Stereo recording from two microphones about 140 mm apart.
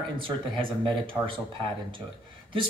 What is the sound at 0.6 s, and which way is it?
Speech, 35° right (ahead or behind).